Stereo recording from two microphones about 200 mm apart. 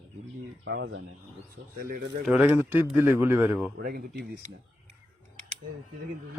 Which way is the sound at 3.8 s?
50° right (ahead or behind).